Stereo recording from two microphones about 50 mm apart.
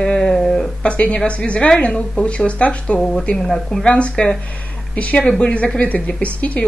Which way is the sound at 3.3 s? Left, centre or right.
Centre.